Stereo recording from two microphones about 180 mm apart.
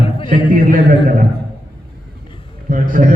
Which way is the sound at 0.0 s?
30° left (ahead or behind).